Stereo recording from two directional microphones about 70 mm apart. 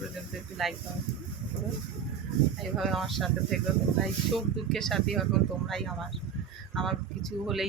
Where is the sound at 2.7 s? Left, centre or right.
Centre.